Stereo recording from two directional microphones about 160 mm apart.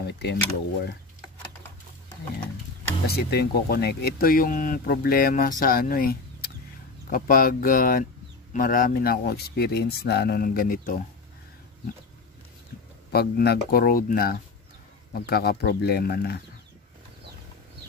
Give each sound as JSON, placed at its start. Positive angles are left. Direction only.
{"t": 0.0, "sound": "speech", "side_deg": 90}
{"t": 3.1, "sound": "speech", "side_deg": 85}
{"t": 13.1, "sound": "speech", "side_deg": 85}
{"t": 15.1, "sound": "speech", "side_deg": 80}